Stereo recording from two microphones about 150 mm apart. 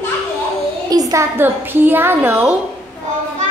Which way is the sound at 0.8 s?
25° right (ahead or behind).